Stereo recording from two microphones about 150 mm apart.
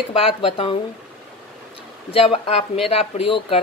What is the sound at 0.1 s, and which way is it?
Speech, 40° left (ahead or behind).